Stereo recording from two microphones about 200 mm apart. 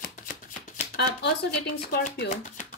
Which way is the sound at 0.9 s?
55° left (ahead or behind).